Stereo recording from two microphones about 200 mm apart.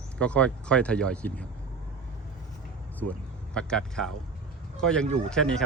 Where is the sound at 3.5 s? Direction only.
5° left (ahead or behind).